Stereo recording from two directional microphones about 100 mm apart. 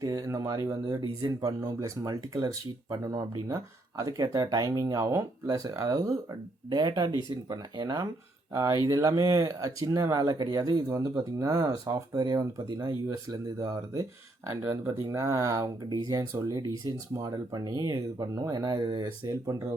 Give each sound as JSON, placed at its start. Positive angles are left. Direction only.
{"t": 0.0, "sound": "speech", "side_deg": -35}
{"t": 6.7, "sound": "speech", "side_deg": -45}
{"t": 19.2, "sound": "speech", "side_deg": -30}